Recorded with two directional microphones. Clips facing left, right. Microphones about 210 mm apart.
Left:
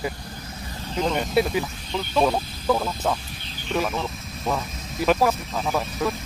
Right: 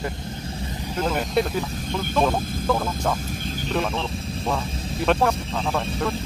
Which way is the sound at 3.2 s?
45° right (ahead or behind).